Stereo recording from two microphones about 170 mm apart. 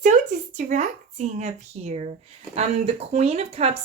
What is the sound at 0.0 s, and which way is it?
A woman's voice, 45° right (ahead or behind).